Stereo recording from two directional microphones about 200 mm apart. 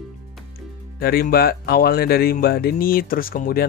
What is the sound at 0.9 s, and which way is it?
Speech, 50° left (ahead or behind).